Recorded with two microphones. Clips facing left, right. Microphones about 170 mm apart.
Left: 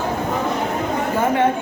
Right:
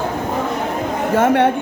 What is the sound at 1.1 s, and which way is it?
Speech, 80° right.